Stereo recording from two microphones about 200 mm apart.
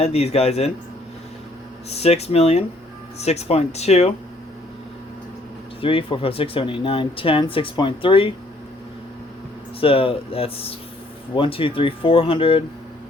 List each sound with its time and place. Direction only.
0.0 s speech: 35° left (ahead or behind)
1.9 s speech: 30° left (ahead or behind)
5.8 s speech: 25° left (ahead or behind)
9.8 s speech: 30° left (ahead or behind)